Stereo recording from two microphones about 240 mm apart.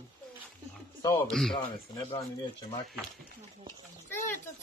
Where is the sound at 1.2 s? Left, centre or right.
Centre.